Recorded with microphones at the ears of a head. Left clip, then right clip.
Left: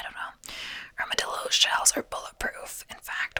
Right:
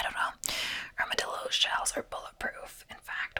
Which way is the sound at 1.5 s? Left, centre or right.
Left.